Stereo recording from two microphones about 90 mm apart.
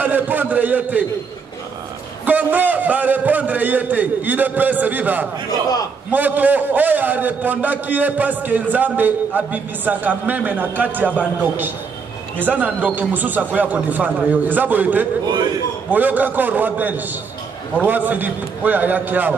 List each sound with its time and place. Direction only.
0.0 s a man's voice: 20° right (ahead or behind)
2.2 s a man's voice: 20° right (ahead or behind)